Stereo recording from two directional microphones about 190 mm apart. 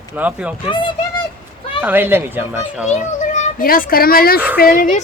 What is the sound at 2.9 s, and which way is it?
A child's voice, 45° left (ahead or behind).